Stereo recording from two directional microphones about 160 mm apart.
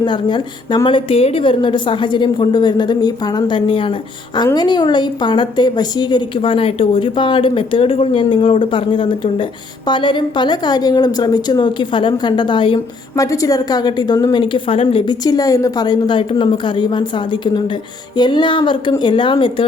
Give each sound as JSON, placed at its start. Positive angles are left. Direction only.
{"t": 0.0, "sound": "a woman's voice", "side_deg": 30}
{"t": 13.1, "sound": "a woman's voice", "side_deg": 20}